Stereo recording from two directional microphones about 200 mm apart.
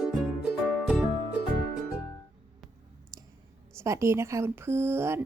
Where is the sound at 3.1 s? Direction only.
20° right (ahead or behind).